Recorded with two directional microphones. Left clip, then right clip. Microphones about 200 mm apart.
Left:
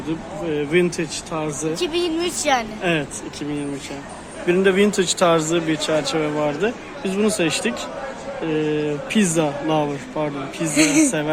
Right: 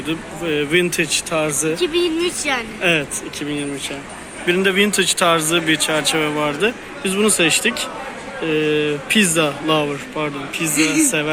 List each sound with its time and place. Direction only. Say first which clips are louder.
0.1 s speech: right 3 dB; 5° left (ahead or behind)
1.8 s speech: right 3 dB; 55° left (ahead or behind)
2.8 s speech: right 4 dB; 10° left (ahead or behind)
4.4 s speech: right 1 dB; 5° left (ahead or behind)
10.8 s speech: left 1 dB; 60° left (ahead or behind)